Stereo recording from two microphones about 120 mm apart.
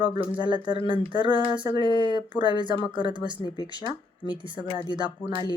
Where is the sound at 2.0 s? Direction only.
40° right (ahead or behind).